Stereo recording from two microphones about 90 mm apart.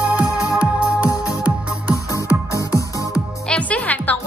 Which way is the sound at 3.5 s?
15° left (ahead or behind).